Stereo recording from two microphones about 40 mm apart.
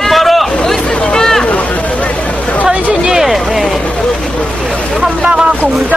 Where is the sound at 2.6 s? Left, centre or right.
Centre.